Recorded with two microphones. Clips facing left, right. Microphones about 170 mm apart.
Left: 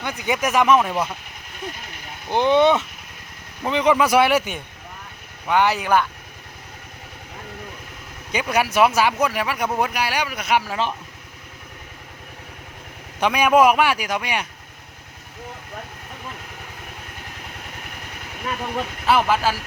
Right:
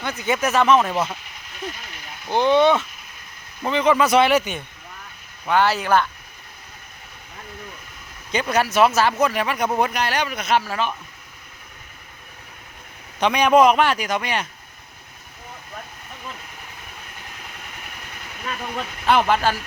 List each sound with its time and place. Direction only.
0.0 s speech: 15° left (ahead or behind)
2.3 s speech: 15° left (ahead or behind)
8.3 s speech: 10° left (ahead or behind)
13.1 s speech: 10° left (ahead or behind)
19.0 s speech: 5° left (ahead or behind)